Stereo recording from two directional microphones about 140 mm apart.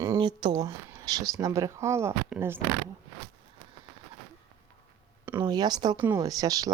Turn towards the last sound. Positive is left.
turn(degrees=-25)  # may be behind; listen again after turning